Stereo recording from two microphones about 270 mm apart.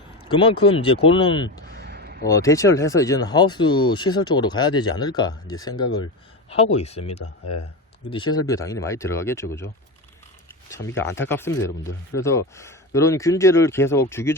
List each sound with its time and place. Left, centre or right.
0.3 s speech: centre
1.6 s a sound: right
2.2 s speech: centre
10.7 s speech: centre